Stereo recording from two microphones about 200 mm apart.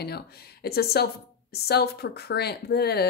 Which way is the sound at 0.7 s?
50° left (ahead or behind).